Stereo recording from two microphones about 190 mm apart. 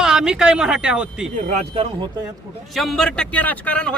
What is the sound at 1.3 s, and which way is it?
Speech, 45° right (ahead or behind).